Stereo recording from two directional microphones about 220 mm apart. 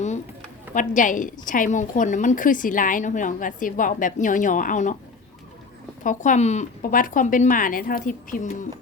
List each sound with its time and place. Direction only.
0.7 s a woman's voice: 35° left (ahead or behind)
6.0 s a woman's voice: 35° left (ahead or behind)